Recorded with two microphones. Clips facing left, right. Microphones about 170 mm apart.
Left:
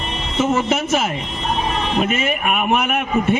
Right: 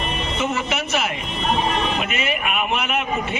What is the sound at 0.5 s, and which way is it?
A man's voice, 45° left (ahead or behind).